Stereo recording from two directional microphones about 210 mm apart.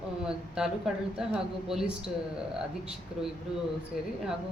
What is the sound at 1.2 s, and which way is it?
Speech, 5° right (ahead or behind).